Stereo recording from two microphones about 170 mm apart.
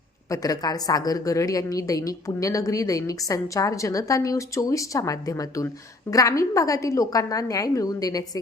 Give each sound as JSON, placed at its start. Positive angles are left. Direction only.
{"t": 0.3, "sound": "a woman's voice", "side_deg": 20}